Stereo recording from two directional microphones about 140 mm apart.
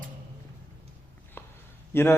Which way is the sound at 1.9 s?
15° left (ahead or behind).